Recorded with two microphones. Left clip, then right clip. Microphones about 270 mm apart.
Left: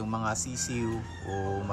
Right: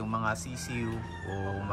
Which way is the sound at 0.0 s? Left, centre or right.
Centre.